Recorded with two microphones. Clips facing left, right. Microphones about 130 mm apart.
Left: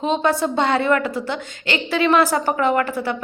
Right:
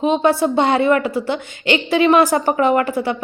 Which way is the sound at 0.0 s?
10° right (ahead or behind).